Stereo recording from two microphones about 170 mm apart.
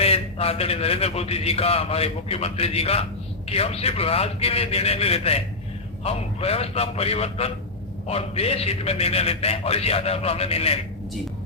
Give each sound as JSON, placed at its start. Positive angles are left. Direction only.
{"t": 0.0, "sound": "a man's voice", "side_deg": 35}